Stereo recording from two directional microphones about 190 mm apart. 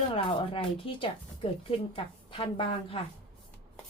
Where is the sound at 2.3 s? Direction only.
30° left (ahead or behind).